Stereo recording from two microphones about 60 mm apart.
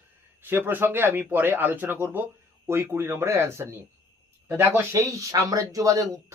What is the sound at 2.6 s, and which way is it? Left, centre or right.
Speech, right.